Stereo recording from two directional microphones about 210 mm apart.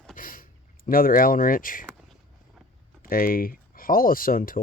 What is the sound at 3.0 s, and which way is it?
Speech, 45° left (ahead or behind).